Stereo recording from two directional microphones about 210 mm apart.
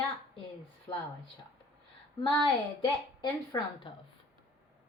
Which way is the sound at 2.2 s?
25° left (ahead or behind).